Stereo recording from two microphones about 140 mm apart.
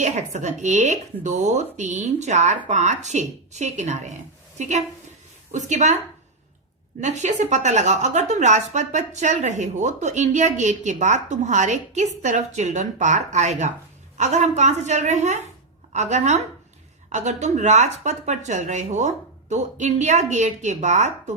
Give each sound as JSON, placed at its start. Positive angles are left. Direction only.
{"t": 0.0, "sound": "a woman's voice", "side_deg": -55}
{"t": 7.0, "sound": "a woman's voice", "side_deg": -55}